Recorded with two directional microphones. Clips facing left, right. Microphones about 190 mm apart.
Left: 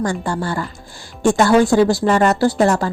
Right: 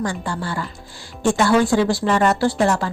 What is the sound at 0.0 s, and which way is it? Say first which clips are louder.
A woman's voice: left 4 dB; 45° left (ahead or behind).